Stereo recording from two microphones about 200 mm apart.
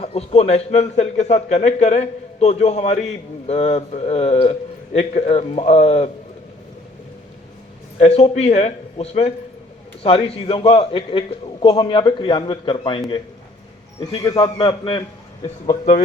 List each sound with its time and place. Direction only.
0.0 s a man's voice: 30° left (ahead or behind)
7.9 s a man's voice: 30° left (ahead or behind)
14.0 s a man's voice: 20° left (ahead or behind)
15.7 s a man's voice: 35° left (ahead or behind)